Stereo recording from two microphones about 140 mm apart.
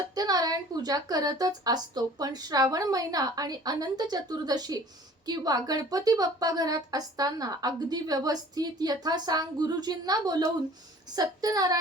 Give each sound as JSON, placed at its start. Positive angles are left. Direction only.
{"t": 0.1, "sound": "a woman's voice", "side_deg": -25}